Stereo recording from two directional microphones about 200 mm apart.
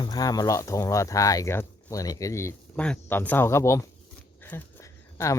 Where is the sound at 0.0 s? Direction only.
20° left (ahead or behind).